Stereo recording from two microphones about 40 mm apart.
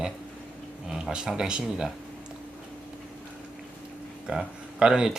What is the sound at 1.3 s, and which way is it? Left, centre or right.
Speech, centre.